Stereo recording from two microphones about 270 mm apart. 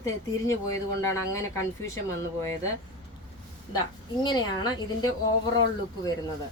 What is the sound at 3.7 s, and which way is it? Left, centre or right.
A woman's voice, centre.